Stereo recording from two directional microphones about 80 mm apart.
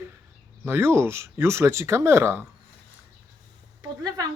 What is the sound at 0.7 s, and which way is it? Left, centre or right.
Speech, right.